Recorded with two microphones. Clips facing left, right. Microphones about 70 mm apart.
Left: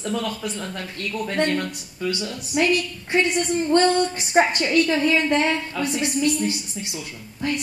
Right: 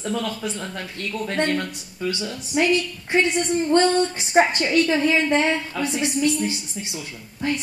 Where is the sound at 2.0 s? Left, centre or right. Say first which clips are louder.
Even; centre.